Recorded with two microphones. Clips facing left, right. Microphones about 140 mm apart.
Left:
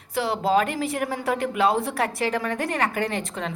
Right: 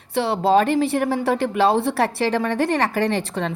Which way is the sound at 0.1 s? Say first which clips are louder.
Right 4 dB; 30° right (ahead or behind).